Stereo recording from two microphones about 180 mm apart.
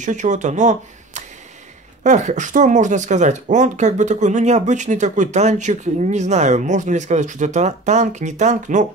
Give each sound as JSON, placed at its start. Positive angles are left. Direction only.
{"t": 0.0, "sound": "speech", "side_deg": -45}